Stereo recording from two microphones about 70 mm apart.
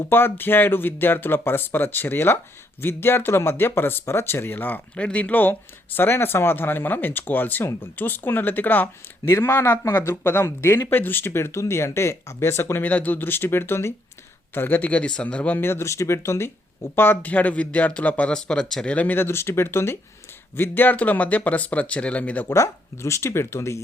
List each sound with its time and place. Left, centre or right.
0.1 s speech: left
9.3 s speech: left; by 15.5 s centre
15.5 s speech: left
16.9 s speech: left; by 18.9 s centre
18.9 s speech: left
22.4 s speech: left